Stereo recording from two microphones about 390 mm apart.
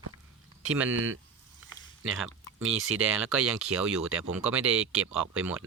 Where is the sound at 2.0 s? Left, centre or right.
Right.